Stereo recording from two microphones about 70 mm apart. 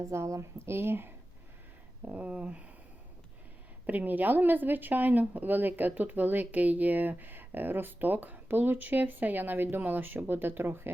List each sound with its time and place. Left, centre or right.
0.0 s speech: right
2.0 s speech: centre
3.8 s speech: right